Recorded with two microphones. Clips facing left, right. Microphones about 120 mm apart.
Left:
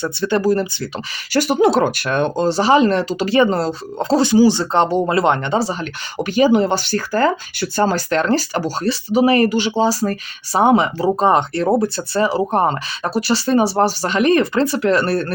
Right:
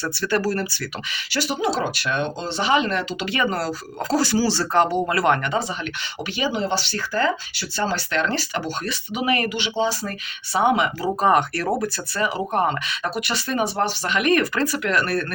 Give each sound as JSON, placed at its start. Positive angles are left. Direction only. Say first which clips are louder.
{"t": 0.0, "sound": "speech", "louder": "left 5 dB", "side_deg": 20}
{"t": 1.3, "sound": "speech", "louder": "left 9 dB", "side_deg": 50}